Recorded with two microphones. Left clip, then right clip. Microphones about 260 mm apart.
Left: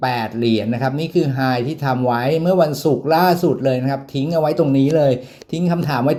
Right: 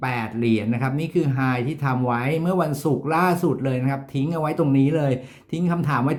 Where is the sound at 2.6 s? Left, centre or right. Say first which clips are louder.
Left 7 dB; right.